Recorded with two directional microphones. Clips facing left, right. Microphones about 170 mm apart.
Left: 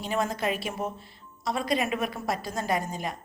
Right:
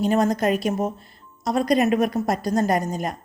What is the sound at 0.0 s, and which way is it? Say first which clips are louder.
A woman's voice: right 8 dB; 45° right (ahead or behind).